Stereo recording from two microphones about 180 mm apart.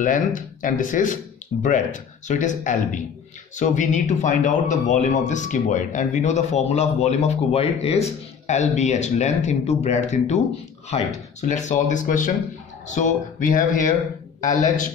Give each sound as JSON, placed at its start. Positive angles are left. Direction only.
{"t": 0.0, "sound": "a man's voice", "side_deg": 45}